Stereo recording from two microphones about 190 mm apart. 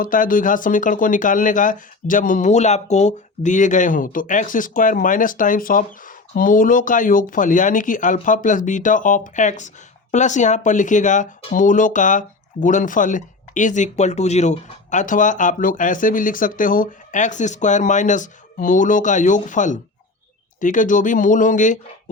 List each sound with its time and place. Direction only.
0.0 s speech: 45° left (ahead or behind)